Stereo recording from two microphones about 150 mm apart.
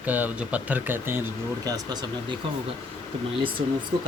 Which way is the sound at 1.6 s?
25° right (ahead or behind).